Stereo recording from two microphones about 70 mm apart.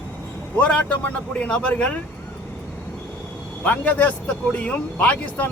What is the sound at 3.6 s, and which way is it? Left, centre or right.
Speech, left.